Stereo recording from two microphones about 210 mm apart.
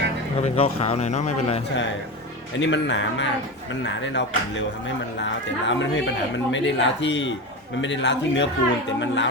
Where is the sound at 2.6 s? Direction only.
60° left (ahead or behind).